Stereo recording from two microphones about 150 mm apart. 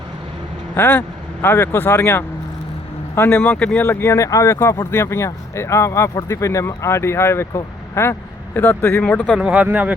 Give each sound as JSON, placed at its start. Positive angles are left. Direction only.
{"t": 0.8, "sound": "speech", "side_deg": 15}
{"t": 9.4, "sound": "speech", "side_deg": -10}